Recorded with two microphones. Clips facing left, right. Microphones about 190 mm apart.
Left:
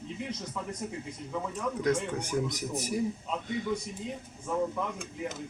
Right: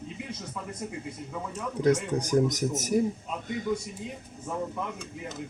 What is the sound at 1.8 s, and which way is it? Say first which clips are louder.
A man's voice: right 6 dB; 40° right (ahead or behind).